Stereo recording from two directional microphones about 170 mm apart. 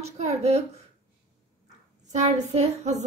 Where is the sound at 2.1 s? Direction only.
40° right (ahead or behind).